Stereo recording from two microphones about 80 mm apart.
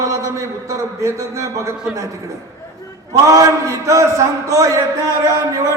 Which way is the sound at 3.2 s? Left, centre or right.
Right.